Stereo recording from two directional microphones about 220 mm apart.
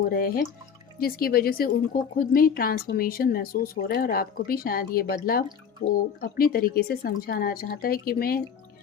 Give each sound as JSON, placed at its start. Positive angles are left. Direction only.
{"t": 0.1, "sound": "a woman's voice", "side_deg": 45}